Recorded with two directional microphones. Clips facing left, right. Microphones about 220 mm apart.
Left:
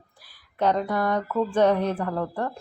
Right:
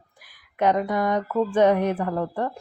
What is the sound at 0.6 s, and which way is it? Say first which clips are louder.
A woman's voice: right 2 dB; 15° right (ahead or behind).